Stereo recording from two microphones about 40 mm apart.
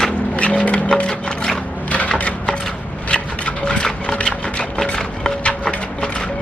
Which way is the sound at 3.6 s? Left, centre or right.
Centre.